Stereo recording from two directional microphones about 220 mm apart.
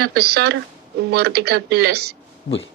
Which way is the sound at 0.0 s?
50° right (ahead or behind).